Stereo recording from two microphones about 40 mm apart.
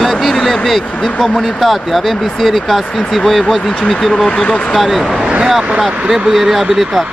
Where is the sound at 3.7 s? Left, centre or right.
Centre.